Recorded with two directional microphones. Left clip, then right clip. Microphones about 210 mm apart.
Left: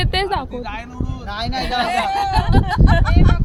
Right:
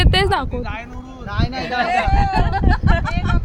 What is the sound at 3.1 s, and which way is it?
Speech, 20° left (ahead or behind).